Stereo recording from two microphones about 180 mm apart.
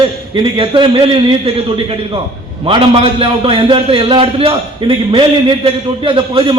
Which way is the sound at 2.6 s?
30° right (ahead or behind).